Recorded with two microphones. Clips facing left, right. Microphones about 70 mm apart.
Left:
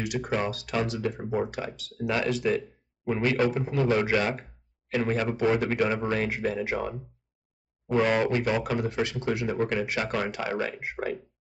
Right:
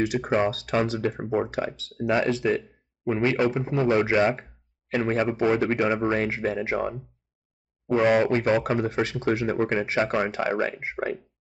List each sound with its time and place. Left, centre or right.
0.0 s speech: right
7.9 s speech: centre
8.3 s speech: right